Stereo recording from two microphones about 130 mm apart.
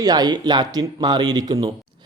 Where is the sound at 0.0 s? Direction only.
30° right (ahead or behind).